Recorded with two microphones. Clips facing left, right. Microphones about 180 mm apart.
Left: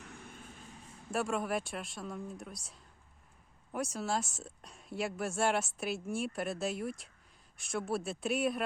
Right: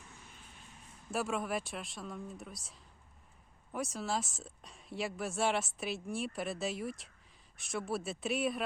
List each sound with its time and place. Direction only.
0.0 s vehicle: 60° left (ahead or behind)
1.1 s a woman's voice: centre (ahead or behind)